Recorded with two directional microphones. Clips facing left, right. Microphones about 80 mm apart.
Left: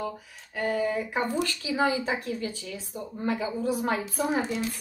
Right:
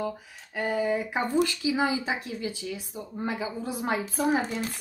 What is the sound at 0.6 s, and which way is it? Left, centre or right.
A woman's voice, centre.